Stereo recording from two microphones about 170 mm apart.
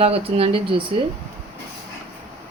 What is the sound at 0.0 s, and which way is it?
Speech, 35° right (ahead or behind).